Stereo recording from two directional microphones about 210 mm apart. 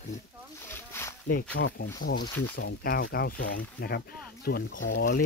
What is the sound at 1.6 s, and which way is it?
Speech, 60° left (ahead or behind).